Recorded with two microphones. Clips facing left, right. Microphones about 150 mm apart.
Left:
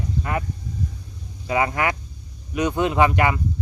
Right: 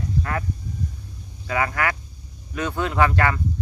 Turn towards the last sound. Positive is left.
turn(degrees=15)  # may be behind; listen again after turning